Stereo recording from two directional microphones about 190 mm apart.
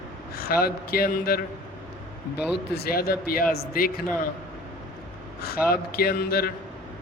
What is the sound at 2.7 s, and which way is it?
Speech, 55° left (ahead or behind).